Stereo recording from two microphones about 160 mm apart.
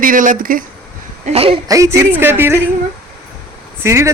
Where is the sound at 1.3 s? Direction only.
35° right (ahead or behind).